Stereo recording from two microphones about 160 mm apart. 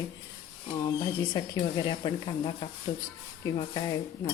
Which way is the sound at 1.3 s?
25° left (ahead or behind).